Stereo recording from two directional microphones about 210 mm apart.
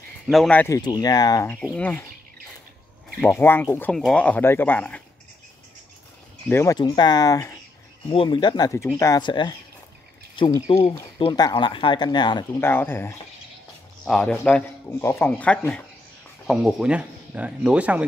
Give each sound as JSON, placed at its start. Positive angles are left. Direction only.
{"t": 0.3, "sound": "speech", "side_deg": 5}
{"t": 3.2, "sound": "speech", "side_deg": 10}
{"t": 6.5, "sound": "speech", "side_deg": 15}